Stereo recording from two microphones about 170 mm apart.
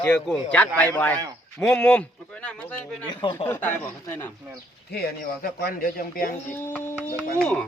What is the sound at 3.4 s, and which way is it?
Speech, 10° left (ahead or behind).